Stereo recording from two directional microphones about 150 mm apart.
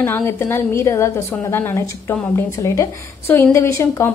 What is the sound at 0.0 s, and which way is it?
A woman's voice, 15° left (ahead or behind).